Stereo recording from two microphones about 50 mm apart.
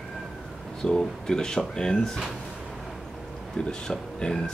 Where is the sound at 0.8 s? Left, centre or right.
Centre.